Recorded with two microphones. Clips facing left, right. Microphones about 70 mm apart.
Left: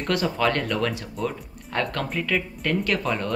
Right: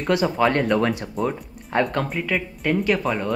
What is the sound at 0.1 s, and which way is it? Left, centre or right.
Speech, centre.